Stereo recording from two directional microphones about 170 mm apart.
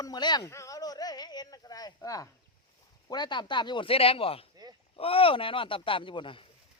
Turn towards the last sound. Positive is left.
turn(degrees=30)  # may be behind; listen again after turning